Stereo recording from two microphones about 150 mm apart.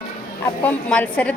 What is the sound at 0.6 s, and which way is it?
Speech, 10° left (ahead or behind).